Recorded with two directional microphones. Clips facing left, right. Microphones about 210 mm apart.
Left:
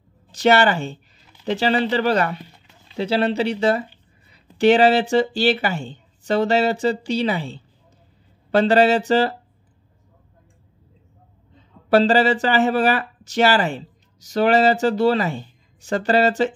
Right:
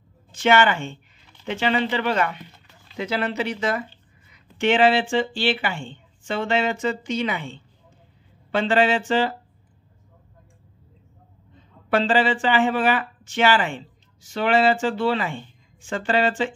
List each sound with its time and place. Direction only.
0.3 s speech: 40° left (ahead or behind)
11.9 s speech: 40° left (ahead or behind)